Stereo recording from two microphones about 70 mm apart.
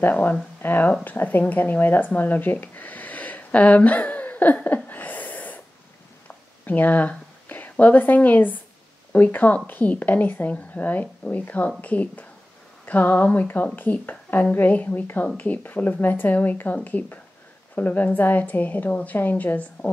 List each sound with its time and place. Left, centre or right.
0.0 s a woman's voice: left
6.2 s a sound: left
7.8 s a woman's voice: left